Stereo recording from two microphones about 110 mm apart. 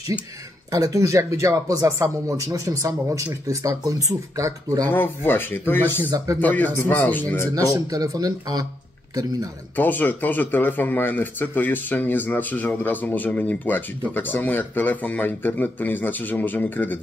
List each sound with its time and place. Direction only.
0.7 s speech: 30° right (ahead or behind)
4.8 s speech: 20° left (ahead or behind)
7.5 s speech: 35° right (ahead or behind)
9.8 s speech: 15° left (ahead or behind)